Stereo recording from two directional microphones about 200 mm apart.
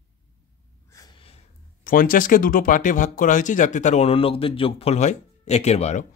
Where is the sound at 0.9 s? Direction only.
20° left (ahead or behind).